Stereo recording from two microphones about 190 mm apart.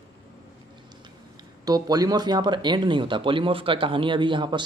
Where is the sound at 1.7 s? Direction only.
20° right (ahead or behind).